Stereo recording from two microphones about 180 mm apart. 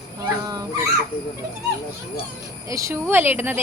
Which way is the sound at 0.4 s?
20° right (ahead or behind).